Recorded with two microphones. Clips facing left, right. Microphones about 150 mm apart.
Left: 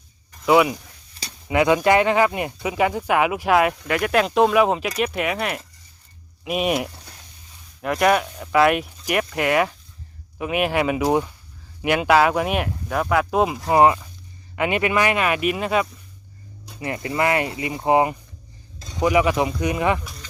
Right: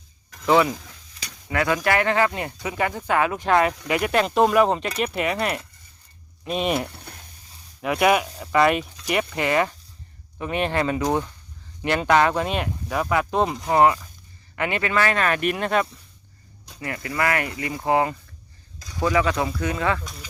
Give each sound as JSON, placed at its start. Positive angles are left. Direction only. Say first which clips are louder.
{"t": 0.4, "sound": "speech", "louder": "left 2 dB", "side_deg": 10}
{"t": 3.8, "sound": "speech", "louder": "left 1 dB", "side_deg": -10}
{"t": 7.8, "sound": "speech", "louder": "left 1 dB", "side_deg": -5}
{"t": 13.7, "sound": "speech", "louder": "left 2 dB", "side_deg": 15}
{"t": 16.8, "sound": "speech", "louder": "left 3 dB", "side_deg": 25}